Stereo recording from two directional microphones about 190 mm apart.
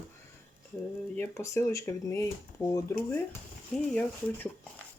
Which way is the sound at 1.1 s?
15° left (ahead or behind).